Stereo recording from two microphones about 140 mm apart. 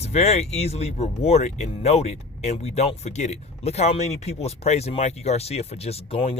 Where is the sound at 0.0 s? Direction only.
50° left (ahead or behind).